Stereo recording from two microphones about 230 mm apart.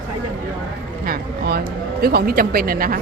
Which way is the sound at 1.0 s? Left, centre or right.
Right.